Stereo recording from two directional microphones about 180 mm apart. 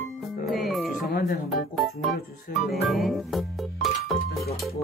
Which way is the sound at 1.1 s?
55° left (ahead or behind).